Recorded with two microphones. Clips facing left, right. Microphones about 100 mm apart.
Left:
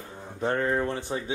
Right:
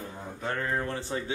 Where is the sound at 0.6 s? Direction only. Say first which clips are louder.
Left 4 dB; 20° left (ahead or behind).